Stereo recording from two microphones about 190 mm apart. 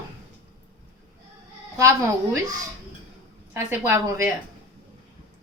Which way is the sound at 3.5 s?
15° right (ahead or behind).